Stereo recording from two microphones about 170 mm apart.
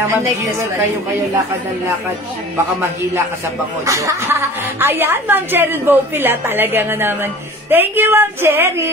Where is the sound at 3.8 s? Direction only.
20° right (ahead or behind).